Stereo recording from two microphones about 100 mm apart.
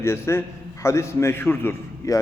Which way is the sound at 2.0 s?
30° left (ahead or behind).